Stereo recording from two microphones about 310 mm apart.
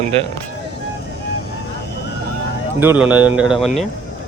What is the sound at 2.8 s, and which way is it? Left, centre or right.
Speech, centre.